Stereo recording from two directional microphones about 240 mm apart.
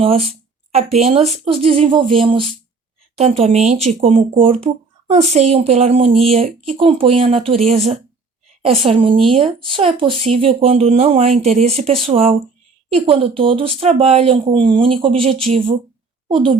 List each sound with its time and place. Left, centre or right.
0.0 s speech: right